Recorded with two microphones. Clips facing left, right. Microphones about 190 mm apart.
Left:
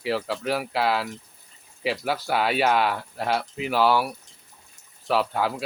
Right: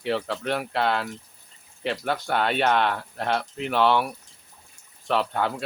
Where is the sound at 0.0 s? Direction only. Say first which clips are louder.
Even; 5° left (ahead or behind).